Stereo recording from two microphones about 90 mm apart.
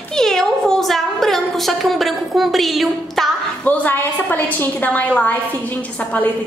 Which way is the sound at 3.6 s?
20° left (ahead or behind).